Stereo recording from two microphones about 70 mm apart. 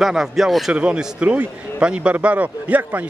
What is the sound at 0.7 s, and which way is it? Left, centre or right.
A woman's voice, centre.